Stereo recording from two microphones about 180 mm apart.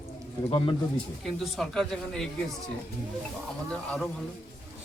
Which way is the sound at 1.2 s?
Centre (ahead or behind).